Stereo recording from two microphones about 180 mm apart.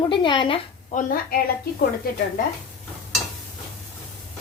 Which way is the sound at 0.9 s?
50° left (ahead or behind).